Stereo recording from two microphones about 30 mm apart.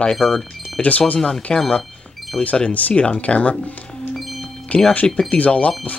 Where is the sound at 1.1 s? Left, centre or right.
Centre.